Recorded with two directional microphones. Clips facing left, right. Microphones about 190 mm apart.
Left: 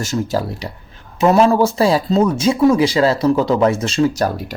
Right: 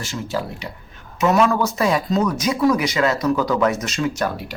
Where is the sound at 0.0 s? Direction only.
40° left (ahead or behind).